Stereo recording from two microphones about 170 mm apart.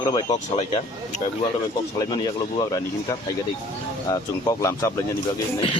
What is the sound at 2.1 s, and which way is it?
Speech, 25° left (ahead or behind).